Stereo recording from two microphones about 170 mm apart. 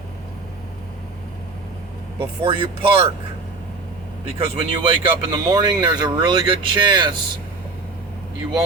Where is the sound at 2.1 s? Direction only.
30° right (ahead or behind).